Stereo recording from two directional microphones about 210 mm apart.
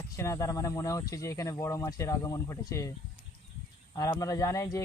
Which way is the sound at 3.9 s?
15° left (ahead or behind).